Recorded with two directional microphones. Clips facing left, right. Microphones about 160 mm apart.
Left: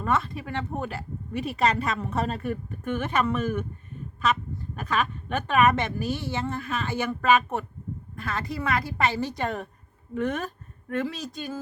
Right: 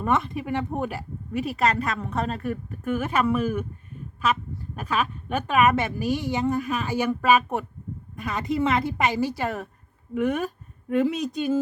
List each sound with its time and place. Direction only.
0.0 s speech: 20° right (ahead or behind)
1.3 s a woman's voice: centre (ahead or behind); by 11.6 s 20° right (ahead or behind)